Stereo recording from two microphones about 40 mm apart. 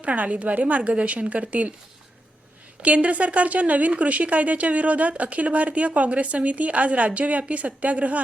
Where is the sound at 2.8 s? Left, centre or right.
Right.